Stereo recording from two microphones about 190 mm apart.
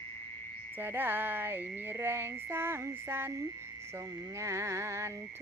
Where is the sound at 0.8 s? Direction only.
10° right (ahead or behind).